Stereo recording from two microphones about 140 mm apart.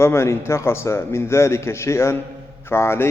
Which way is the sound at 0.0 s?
20° left (ahead or behind).